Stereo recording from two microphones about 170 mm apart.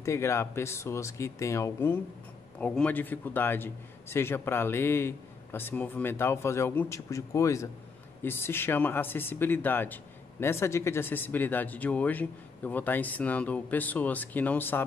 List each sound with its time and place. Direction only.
0.0 s a man's voice: 15° left (ahead or behind)